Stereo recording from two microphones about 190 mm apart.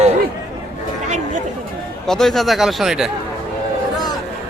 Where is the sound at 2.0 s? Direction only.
Centre (ahead or behind).